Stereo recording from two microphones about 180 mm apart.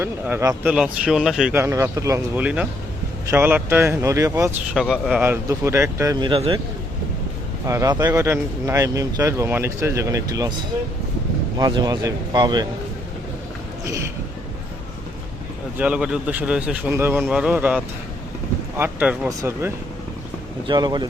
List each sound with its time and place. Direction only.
0.0 s speech: 15° right (ahead or behind)
4.7 s speech: 5° right (ahead or behind); by 6.6 s 30° right (ahead or behind)
7.7 s speech: 15° right (ahead or behind)
11.5 s speech: 20° right (ahead or behind)
15.8 s speech: 5° right (ahead or behind)
18.8 s speech: 10° right (ahead or behind)
20.7 s speech: 25° right (ahead or behind)